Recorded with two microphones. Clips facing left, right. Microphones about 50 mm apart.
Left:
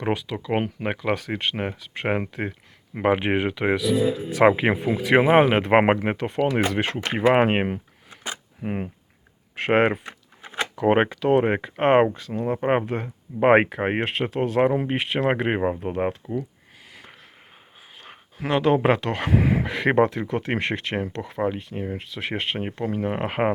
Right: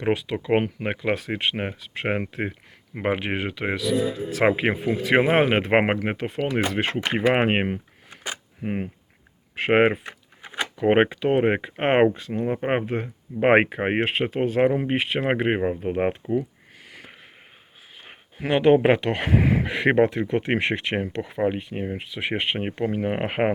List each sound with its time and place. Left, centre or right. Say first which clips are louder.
0.0 s speech: right 2 dB; centre
3.2 s speech: left 4 dB; centre
3.4 s speech: left 4 dB; centre
8.1 s camera: even; centre
9.6 s a sound: right 1 dB; centre
10.8 s speech: even; centre
15.9 s speech: right 2 dB; right
16.9 s sniff: right 1 dB; centre
18.0 s speech: right 1 dB; centre
19.3 s a sound: left 1 dB; centre
19.7 s speech: right 1 dB; centre